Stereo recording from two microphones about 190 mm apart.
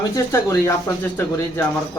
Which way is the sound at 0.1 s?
15° left (ahead or behind).